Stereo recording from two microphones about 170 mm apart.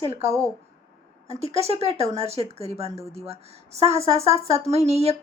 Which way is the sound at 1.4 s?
40° right (ahead or behind).